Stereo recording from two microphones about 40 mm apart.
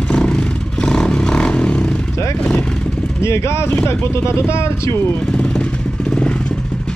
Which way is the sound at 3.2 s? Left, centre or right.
Left.